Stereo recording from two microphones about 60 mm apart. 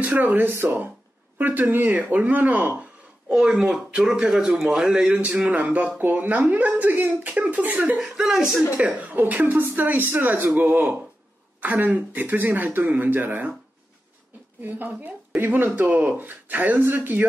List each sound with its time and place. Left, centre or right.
0.0 s speech: right
2.8 s speech: centre
5.1 s speech: right
8.0 s speech: centre
8.7 s speech: right
14.6 s speech: right